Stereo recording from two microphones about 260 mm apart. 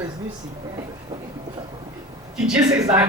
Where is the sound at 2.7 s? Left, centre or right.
Centre.